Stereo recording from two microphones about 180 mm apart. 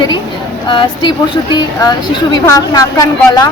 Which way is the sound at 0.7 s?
25° left (ahead or behind).